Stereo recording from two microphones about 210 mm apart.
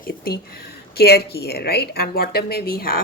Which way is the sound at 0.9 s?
50° left (ahead or behind).